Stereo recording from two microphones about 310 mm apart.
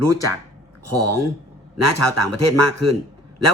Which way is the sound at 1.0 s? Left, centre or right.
Right.